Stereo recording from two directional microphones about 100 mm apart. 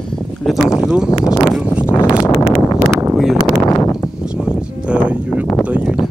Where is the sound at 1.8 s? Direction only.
20° left (ahead or behind).